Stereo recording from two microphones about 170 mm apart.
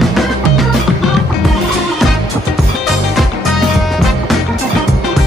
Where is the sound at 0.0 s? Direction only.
Centre (ahead or behind).